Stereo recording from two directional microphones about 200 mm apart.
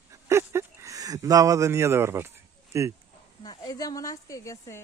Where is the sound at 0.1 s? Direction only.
15° right (ahead or behind).